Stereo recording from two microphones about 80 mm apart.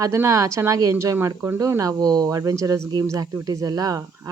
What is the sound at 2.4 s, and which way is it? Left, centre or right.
Speech, right.